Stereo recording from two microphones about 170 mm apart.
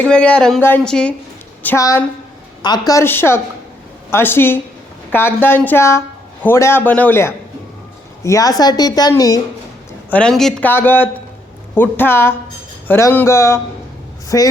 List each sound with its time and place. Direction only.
0.0 s speech: 5° left (ahead or behind)
1.6 s a woman's voice: 15° left (ahead or behind)
10.1 s a woman's voice: 5° left (ahead or behind)